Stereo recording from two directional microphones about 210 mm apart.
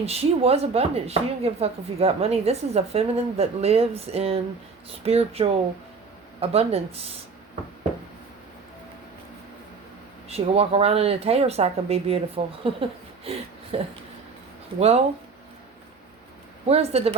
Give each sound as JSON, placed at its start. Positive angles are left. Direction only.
{"t": 0.0, "sound": "speech", "side_deg": -30}
{"t": 10.2, "sound": "speech", "side_deg": -30}
{"t": 16.6, "sound": "speech", "side_deg": -30}